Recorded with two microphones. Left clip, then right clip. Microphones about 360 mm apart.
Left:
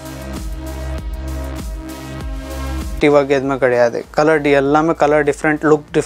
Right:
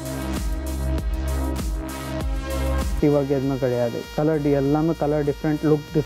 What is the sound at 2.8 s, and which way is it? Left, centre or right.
Speech, centre.